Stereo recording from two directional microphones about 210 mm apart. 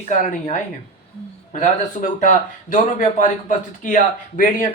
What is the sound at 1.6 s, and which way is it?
Speech, 35° left (ahead or behind).